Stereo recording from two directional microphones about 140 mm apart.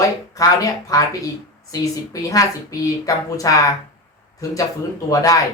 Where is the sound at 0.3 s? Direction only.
25° left (ahead or behind).